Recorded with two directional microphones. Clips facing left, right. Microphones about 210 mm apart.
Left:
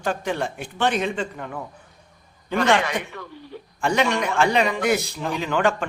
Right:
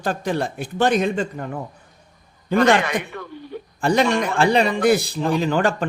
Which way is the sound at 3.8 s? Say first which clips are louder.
Right 3 dB; 35° right (ahead or behind).